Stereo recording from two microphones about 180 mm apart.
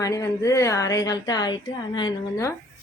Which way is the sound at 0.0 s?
20° left (ahead or behind).